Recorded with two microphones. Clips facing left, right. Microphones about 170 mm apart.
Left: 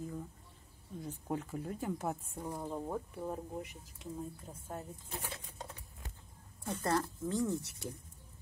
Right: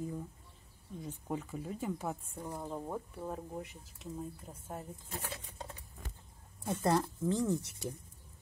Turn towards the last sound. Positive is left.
turn(degrees=-20)  # may be behind; listen again after turning